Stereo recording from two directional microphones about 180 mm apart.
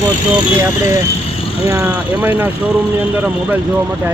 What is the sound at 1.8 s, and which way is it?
Speech, 5° right (ahead or behind).